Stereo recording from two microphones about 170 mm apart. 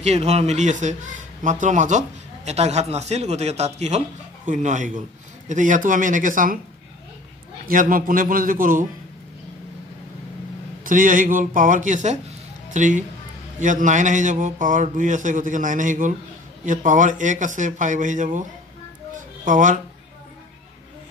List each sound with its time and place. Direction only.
0.0 s a man's voice: 40° right (ahead or behind)
7.6 s a man's voice: 55° right (ahead or behind)
10.9 s speech: 50° right (ahead or behind)
19.1 s a sound: 50° right (ahead or behind)